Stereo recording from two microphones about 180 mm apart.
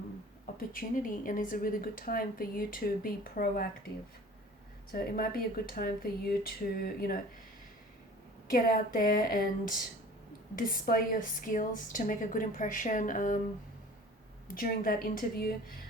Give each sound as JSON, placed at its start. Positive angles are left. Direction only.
{"t": 0.5, "sound": "speech", "side_deg": 55}
{"t": 4.9, "sound": "speech", "side_deg": 55}
{"t": 8.4, "sound": "speech", "side_deg": 55}
{"t": 14.4, "sound": "speech", "side_deg": 50}